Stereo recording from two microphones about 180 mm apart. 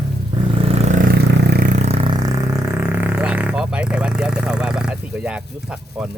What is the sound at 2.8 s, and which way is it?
Vehicle, 10° right (ahead or behind).